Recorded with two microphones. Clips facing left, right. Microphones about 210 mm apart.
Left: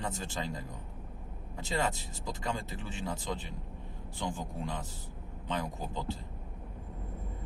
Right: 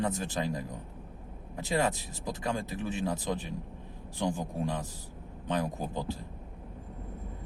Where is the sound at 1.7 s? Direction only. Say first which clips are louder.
Right 4 dB; 15° right (ahead or behind).